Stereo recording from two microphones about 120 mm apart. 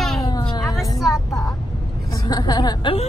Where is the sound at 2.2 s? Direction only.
35° left (ahead or behind).